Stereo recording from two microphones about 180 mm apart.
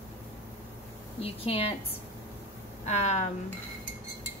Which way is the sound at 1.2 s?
35° left (ahead or behind).